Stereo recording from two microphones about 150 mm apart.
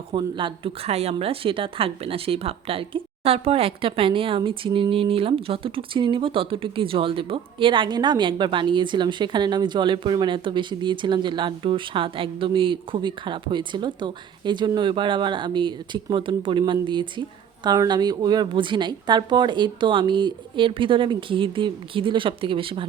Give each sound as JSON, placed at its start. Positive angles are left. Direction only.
{"t": 0.1, "sound": "a woman's voice", "side_deg": -35}